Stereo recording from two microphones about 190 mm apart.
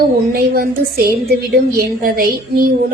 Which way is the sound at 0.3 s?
50° right (ahead or behind).